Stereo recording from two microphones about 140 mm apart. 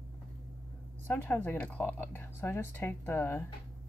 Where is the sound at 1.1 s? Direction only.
15° left (ahead or behind).